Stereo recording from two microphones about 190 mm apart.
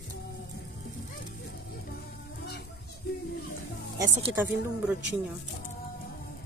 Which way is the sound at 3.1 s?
60° left (ahead or behind).